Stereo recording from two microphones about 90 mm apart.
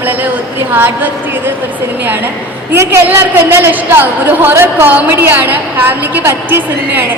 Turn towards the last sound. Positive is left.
turn(degrees=-20)  # may be behind; listen again after turning